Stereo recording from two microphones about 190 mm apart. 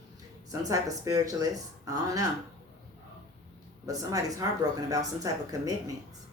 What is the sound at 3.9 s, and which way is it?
Speech, 20° right (ahead or behind).